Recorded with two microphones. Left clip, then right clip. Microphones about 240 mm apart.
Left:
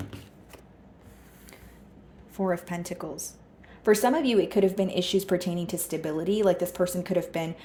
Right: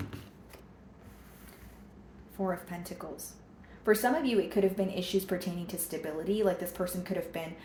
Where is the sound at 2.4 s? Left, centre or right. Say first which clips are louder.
Left 6 dB; left.